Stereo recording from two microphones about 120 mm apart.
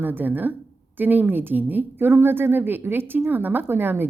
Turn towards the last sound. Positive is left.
turn(degrees=-20)  # may be behind; listen again after turning